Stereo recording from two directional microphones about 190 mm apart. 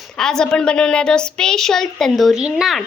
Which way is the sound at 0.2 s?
5° left (ahead or behind).